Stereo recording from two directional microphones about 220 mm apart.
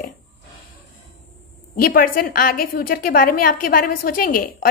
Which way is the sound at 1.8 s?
40° left (ahead or behind).